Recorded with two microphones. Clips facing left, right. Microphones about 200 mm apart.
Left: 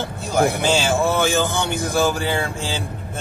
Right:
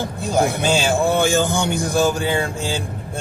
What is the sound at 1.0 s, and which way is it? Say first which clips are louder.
Speech: right 2 dB; 15° right (ahead or behind).